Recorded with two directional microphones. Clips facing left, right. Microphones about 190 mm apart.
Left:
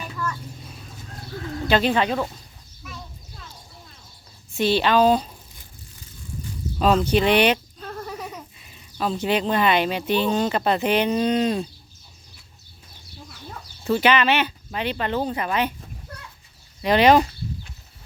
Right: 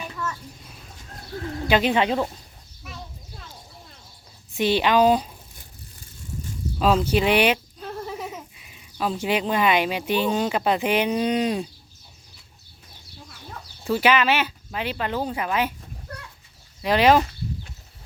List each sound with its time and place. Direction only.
1.6 s speech: 15° right (ahead or behind)
4.5 s speech: 15° right (ahead or behind)
6.7 s speech: 5° right (ahead or behind)
13.8 s speech: 5° right (ahead or behind)
16.8 s speech: centre (ahead or behind)